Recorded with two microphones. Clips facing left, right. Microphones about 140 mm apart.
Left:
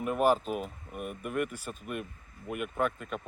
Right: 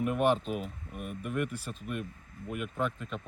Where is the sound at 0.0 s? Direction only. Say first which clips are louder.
Left 1 dB; 40° left (ahead or behind).